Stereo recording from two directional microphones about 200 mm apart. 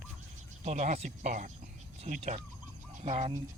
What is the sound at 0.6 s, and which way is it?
Speech, 35° right (ahead or behind).